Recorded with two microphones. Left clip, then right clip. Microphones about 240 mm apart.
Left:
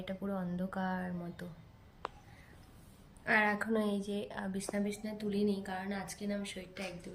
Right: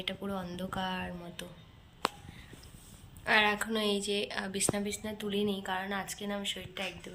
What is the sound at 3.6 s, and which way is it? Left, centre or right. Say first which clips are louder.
Speech: right 3 dB; left.